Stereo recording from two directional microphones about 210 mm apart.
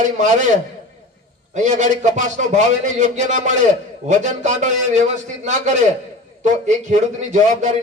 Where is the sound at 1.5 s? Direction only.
35° right (ahead or behind).